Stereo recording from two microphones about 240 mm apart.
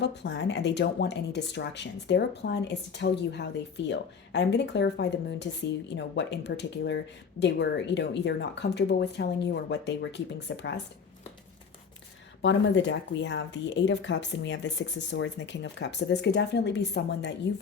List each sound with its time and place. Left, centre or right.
0.0 s speech: left
12.4 s speech: left